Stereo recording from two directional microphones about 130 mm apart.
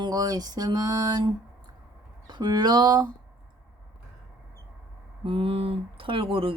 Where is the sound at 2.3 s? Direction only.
35° right (ahead or behind).